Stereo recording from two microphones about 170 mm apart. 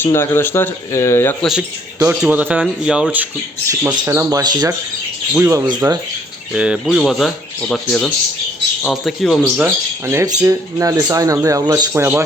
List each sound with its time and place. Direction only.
0.0 s speech: 15° left (ahead or behind)
1.4 s speech: centre (ahead or behind)
3.7 s speech: 15° right (ahead or behind)
6.5 s speech: 5° right (ahead or behind)
9.6 s speech: 15° right (ahead or behind)